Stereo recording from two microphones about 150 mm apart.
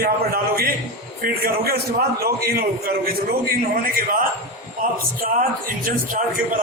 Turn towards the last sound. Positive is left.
turn(degrees=-60)  # may be behind; listen again after turning